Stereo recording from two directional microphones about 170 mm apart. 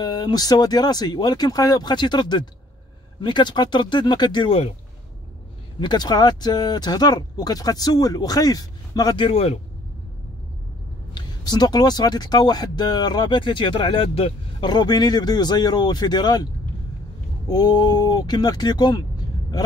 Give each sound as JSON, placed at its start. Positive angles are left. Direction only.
{"t": 0.0, "sound": "speech", "side_deg": 25}
{"t": 5.8, "sound": "speech", "side_deg": 25}
{"t": 11.1, "sound": "speech", "side_deg": 25}
{"t": 17.5, "sound": "speech", "side_deg": 25}